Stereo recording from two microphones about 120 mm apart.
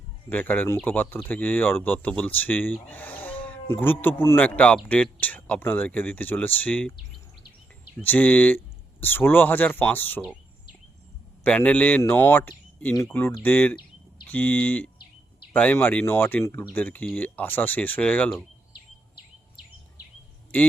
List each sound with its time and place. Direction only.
0.3 s speech: 15° left (ahead or behind)
8.0 s speech: 15° left (ahead or behind)
11.4 s speech: 10° left (ahead or behind)